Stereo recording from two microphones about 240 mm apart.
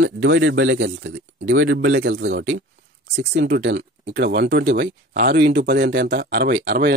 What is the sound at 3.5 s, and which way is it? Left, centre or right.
Speech, right.